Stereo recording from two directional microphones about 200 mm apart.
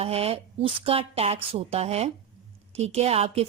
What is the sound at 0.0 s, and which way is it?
A woman's voice, 30° right (ahead or behind).